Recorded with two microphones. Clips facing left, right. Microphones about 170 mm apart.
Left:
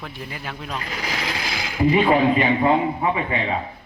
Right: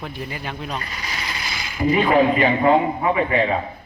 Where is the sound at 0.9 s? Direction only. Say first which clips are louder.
Left 4 dB; 75° left (ahead or behind).